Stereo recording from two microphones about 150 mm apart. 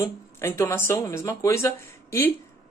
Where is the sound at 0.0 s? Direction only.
20° left (ahead or behind).